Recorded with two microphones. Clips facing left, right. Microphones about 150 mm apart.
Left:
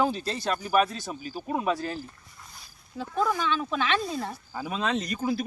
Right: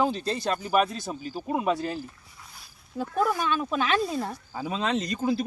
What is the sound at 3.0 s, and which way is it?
Speech, 45° right (ahead or behind).